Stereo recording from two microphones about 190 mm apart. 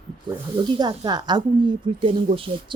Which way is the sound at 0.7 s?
20° right (ahead or behind).